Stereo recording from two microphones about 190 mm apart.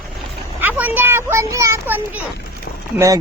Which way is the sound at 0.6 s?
10° right (ahead or behind).